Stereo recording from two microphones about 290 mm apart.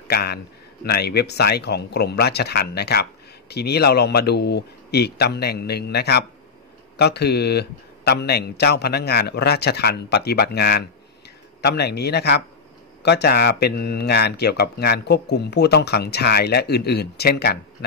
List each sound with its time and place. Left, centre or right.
0.1 s speech: left